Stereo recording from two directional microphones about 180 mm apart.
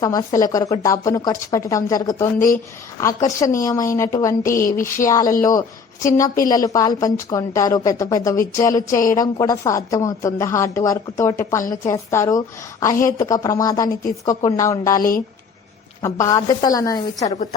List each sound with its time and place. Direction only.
0.0 s a woman's voice: 20° left (ahead or behind)
17.2 s a woman's voice: 40° left (ahead or behind)